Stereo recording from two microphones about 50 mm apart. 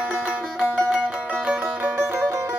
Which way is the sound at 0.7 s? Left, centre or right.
Right.